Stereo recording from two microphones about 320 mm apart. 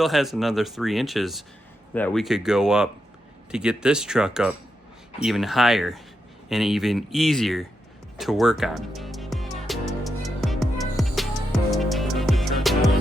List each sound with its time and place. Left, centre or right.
0.0 s speech: centre
8.2 s music: centre